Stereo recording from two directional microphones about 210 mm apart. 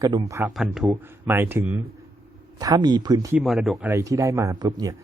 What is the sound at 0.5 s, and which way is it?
Speech, centre (ahead or behind).